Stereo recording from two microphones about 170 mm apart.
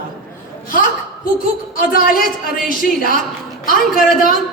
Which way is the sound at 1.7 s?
55° left (ahead or behind).